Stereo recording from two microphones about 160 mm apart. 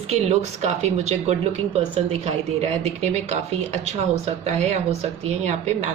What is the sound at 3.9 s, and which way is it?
Speech, 40° right (ahead or behind).